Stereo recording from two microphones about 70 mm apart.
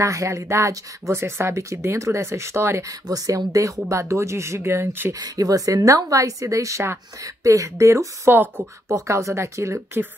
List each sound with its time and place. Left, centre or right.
0.0 s speech: right
2.9 s speech: right
5.1 s speech: right
7.2 s speech: right
8.3 s speech: right
8.9 s speech: right